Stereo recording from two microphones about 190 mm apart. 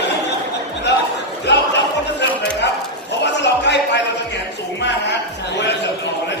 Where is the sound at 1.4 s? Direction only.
65° left (ahead or behind).